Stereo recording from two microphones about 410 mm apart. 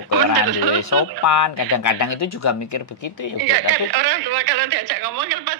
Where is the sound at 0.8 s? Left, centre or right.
Left.